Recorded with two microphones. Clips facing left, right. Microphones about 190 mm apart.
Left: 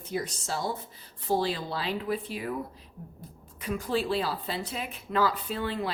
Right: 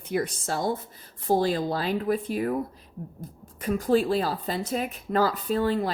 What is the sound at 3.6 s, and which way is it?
Speech, 45° right (ahead or behind).